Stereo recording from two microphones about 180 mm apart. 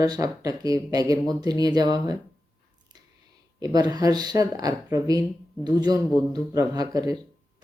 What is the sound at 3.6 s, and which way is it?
Speech, 20° right (ahead or behind).